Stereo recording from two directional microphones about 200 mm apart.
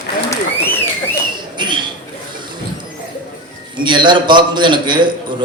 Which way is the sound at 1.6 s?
25° right (ahead or behind).